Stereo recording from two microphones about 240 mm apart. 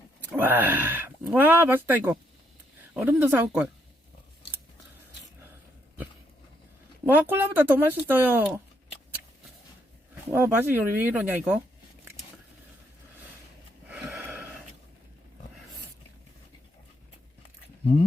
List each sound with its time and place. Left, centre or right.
0.3 s speech: centre
7.0 s speech: centre
10.3 s speech: centre
13.8 s a sound: centre